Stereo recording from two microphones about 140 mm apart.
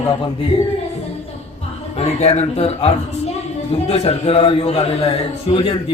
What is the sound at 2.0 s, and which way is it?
A man's voice, 50° left (ahead or behind).